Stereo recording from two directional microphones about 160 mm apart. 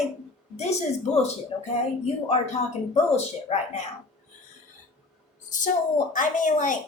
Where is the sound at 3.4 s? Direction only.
40° left (ahead or behind).